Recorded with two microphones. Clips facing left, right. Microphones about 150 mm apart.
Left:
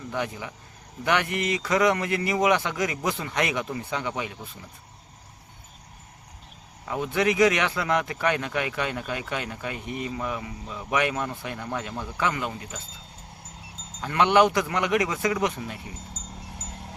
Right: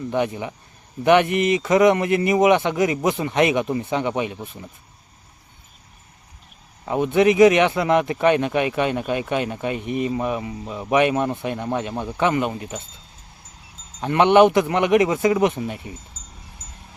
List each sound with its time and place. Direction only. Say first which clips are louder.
0.1 s speech: right 7 dB; 20° right (ahead or behind)
6.8 s speech: right 8 dB; 20° right (ahead or behind)
14.0 s speech: right 6 dB; 20° right (ahead or behind)